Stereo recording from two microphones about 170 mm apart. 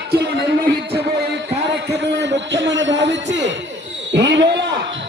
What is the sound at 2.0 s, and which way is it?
A man's voice, 90° right.